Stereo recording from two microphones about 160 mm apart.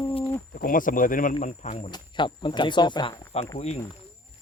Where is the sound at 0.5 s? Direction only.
60° left (ahead or behind).